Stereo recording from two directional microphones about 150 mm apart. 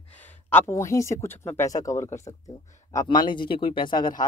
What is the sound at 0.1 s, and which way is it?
Speech, 10° left (ahead or behind).